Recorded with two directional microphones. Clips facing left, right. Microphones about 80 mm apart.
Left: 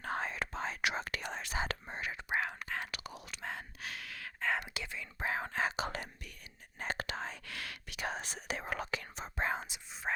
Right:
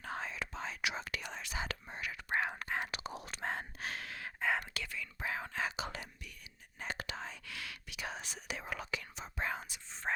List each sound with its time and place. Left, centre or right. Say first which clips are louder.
0.0 s whispering: left 4 dB; left
2.6 s whispering: right 2 dB; centre
4.4 s whispering: even; centre
4.7 s whispering: even; left
5.2 s whispering: left 4 dB; left; by 10.0 s centre